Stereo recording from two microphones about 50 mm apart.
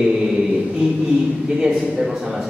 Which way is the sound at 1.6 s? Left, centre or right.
Centre.